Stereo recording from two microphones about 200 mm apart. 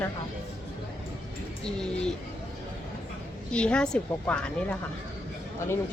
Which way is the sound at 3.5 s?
5° left (ahead or behind).